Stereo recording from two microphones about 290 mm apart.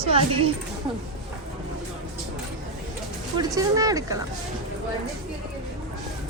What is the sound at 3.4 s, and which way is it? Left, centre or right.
Speech, centre.